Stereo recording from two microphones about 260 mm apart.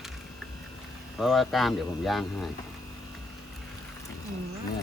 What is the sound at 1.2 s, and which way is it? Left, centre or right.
Speech, centre.